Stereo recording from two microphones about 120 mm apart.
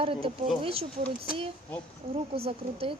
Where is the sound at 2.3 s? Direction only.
55° right (ahead or behind).